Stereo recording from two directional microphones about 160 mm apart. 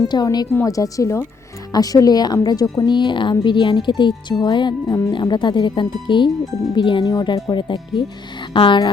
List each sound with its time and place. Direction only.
0.1 s a woman's voice: 25° left (ahead or behind)